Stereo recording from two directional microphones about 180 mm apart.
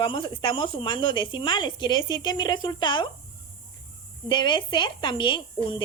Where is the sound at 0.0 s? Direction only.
25° left (ahead or behind).